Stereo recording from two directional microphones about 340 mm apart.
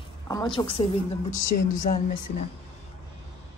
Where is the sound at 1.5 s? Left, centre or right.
Left.